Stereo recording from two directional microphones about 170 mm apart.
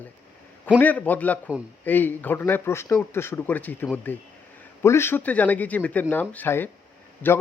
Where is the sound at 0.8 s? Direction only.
10° left (ahead or behind).